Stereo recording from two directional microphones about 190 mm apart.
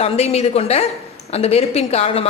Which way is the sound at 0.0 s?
35° left (ahead or behind).